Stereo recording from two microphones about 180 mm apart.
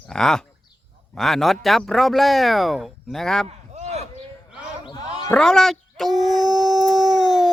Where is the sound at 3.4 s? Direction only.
40° right (ahead or behind).